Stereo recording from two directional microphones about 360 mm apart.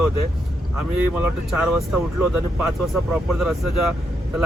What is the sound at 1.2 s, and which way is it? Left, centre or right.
Speech, centre.